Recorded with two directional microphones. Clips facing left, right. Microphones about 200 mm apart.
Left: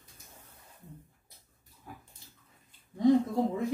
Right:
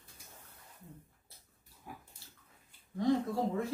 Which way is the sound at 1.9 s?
10° right (ahead or behind).